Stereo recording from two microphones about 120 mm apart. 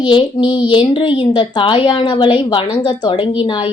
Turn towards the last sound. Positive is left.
turn(degrees=45)  # may be behind; listen again after turning